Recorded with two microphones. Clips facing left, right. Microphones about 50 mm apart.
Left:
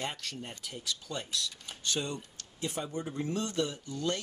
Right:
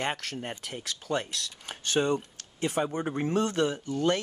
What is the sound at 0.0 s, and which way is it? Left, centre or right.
Speech, right.